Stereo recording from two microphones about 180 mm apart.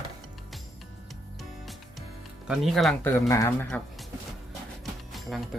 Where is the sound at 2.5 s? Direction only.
Centre (ahead or behind).